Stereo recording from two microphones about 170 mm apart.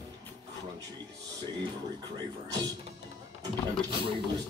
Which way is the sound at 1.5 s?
25° right (ahead or behind).